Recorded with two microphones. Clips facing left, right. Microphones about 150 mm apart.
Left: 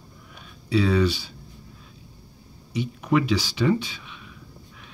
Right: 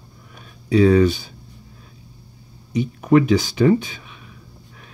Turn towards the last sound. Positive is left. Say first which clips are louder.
# right 1 dB
turn(degrees=-45)  # may be behind; listen again after turning